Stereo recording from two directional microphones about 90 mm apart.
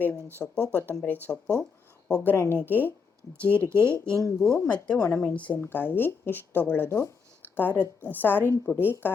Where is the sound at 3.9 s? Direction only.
35° right (ahead or behind).